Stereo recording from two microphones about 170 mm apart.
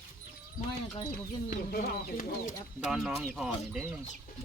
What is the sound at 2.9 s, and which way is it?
Speech, 5° right (ahead or behind).